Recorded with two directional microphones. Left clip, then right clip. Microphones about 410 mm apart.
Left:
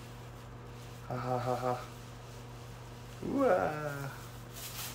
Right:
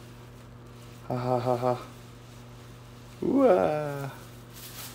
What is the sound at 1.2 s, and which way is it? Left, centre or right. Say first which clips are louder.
Roaring cats: right 7 dB; centre.